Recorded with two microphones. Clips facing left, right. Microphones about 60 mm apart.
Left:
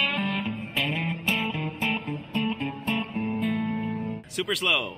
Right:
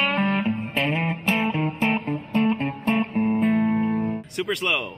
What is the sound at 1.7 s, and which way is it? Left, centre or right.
Music, right.